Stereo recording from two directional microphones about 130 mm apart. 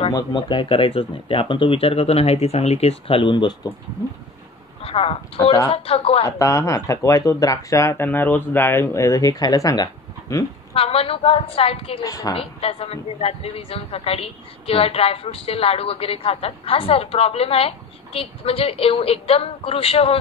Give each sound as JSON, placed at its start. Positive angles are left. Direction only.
{"t": 0.1, "sound": "a woman's voice", "side_deg": 40}
{"t": 4.8, "sound": "a woman's voice", "side_deg": 45}
{"t": 6.2, "sound": "speech", "side_deg": 25}
{"t": 10.7, "sound": "a woman's voice", "side_deg": 50}
{"t": 12.0, "sound": "speech", "side_deg": 25}
{"t": 12.4, "sound": "a woman's voice", "side_deg": 45}